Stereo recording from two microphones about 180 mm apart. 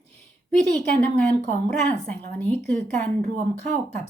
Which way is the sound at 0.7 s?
5° left (ahead or behind).